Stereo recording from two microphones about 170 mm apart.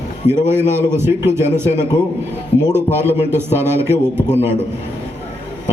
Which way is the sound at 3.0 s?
15° right (ahead or behind).